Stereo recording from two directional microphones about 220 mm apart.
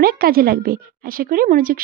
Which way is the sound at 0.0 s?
40° right (ahead or behind).